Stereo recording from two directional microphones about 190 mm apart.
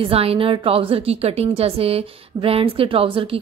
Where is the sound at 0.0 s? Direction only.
30° right (ahead or behind).